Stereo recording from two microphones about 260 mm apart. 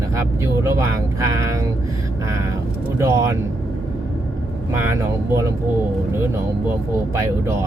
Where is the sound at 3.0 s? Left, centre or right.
Centre.